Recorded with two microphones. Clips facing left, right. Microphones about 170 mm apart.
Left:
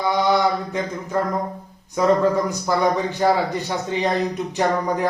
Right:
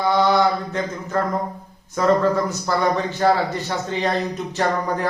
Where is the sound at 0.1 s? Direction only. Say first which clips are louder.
Right 1 dB; 15° left (ahead or behind).